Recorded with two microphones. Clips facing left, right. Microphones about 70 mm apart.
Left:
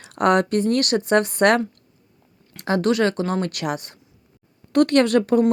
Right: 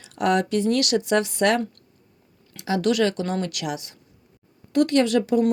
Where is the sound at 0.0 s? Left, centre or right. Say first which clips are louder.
Left 4 dB; left.